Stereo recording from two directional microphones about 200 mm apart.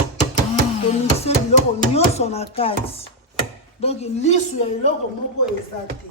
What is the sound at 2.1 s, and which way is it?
Speech, 30° left (ahead or behind).